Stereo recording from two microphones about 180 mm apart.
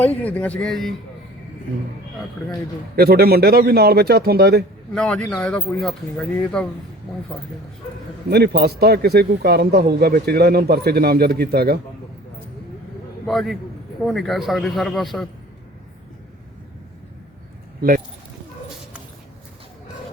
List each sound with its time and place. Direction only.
0.0 s speech: 10° left (ahead or behind)
2.9 s speech: 60° right (ahead or behind)
4.9 s a man's voice: 5° left (ahead or behind)
8.3 s speech: 65° right (ahead or behind)
13.2 s a man's voice: centre (ahead or behind)
17.7 s speech: 50° right (ahead or behind)